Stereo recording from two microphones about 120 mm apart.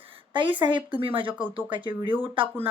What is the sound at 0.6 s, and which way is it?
Speech, 35° right (ahead or behind).